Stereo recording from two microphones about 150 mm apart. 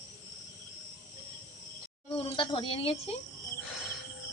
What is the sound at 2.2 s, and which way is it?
Speech, 35° left (ahead or behind).